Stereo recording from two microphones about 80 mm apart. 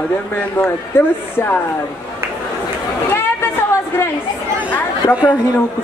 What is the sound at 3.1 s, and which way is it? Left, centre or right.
Chatter, left.